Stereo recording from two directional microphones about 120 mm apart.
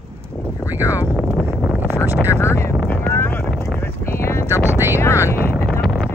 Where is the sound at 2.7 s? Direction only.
10° left (ahead or behind).